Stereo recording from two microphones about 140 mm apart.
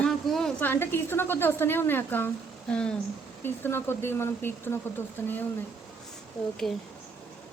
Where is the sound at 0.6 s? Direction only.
15° left (ahead or behind).